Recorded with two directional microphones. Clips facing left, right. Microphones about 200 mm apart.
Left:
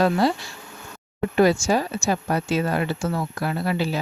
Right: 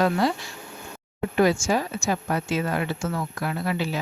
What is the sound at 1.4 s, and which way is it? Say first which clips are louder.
Speech: left 2 dB; 35° left (ahead or behind).